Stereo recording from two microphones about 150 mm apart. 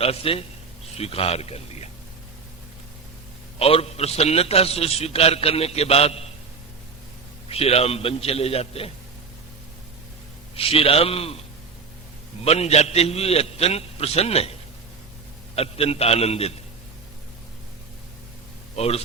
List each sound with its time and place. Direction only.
0.0 s a man's voice: 40° left (ahead or behind)
3.6 s a man's voice: 40° left (ahead or behind)
7.5 s a man's voice: 40° left (ahead or behind)
10.5 s a man's voice: 40° left (ahead or behind)
12.5 s a man's voice: 45° left (ahead or behind)
15.5 s a man's voice: 40° left (ahead or behind)
18.8 s a man's voice: 40° left (ahead or behind)